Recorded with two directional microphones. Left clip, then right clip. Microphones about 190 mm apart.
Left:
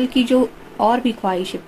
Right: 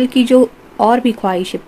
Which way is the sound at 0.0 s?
45° right (ahead or behind).